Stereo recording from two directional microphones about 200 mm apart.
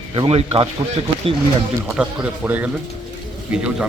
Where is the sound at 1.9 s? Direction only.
5° right (ahead or behind).